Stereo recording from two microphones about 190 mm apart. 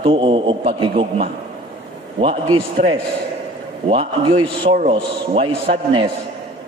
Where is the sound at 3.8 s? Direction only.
30° right (ahead or behind).